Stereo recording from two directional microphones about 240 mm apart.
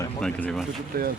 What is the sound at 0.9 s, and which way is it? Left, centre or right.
Speech, right.